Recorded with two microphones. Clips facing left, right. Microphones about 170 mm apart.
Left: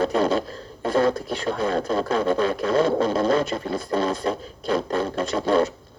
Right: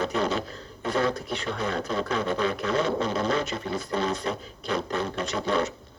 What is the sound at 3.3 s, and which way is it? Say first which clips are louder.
Speech: left 5 dB; 50° left (ahead or behind).